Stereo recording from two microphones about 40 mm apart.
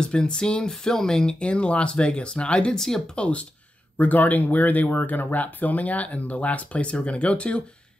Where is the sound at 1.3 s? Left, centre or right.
Left.